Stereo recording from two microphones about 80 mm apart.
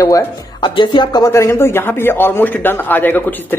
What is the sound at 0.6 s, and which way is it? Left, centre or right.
Speech, left.